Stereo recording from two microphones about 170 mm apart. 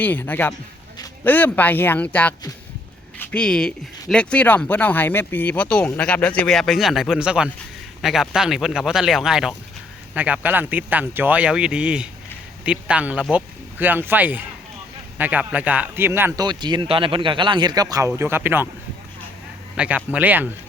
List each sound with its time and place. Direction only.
0.0 s a man's voice: 10° left (ahead or behind); by 18.7 s 10° right (ahead or behind)
19.7 s speech: 5° right (ahead or behind)